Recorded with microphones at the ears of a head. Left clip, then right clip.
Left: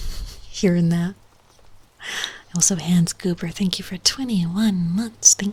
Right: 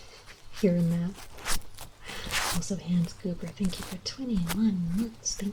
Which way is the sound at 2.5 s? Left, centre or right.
Left.